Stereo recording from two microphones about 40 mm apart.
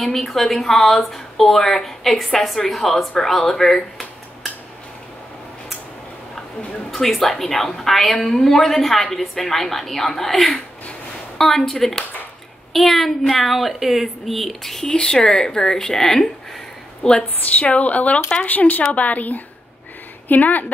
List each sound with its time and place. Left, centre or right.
0.0 s speech: centre
6.9 s speech: centre
17.0 s a woman's voice: left
17.6 s speech: left